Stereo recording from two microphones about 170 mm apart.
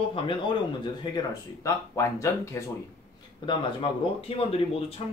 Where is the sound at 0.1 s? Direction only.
30° left (ahead or behind).